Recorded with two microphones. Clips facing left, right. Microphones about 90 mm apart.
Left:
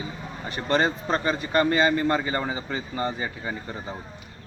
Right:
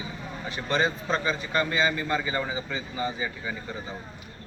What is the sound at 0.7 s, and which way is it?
A man's voice, 50° left (ahead or behind).